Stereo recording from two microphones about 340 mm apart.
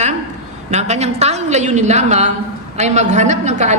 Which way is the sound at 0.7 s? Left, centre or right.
Centre.